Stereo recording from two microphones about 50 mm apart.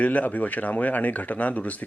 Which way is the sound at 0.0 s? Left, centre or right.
Left.